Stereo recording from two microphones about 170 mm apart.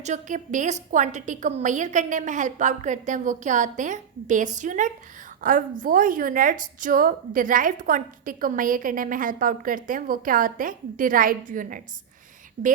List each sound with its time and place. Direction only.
0.0 s a woman's voice: 45° right (ahead or behind)